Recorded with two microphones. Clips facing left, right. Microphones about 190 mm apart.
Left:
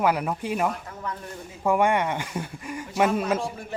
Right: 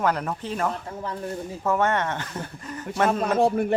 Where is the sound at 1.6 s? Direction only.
10° left (ahead or behind).